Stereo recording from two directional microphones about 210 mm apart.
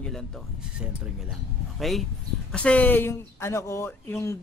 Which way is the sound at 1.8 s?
Centre (ahead or behind).